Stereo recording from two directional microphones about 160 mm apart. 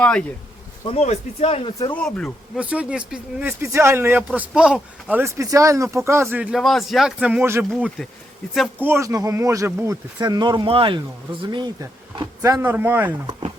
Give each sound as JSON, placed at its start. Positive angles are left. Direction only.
{"t": 0.0, "sound": "speech", "side_deg": 5}
{"t": 0.9, "sound": "speech", "side_deg": 45}
{"t": 1.9, "sound": "speech", "side_deg": 5}
{"t": 2.6, "sound": "speech", "side_deg": -10}
{"t": 8.8, "sound": "speech", "side_deg": -15}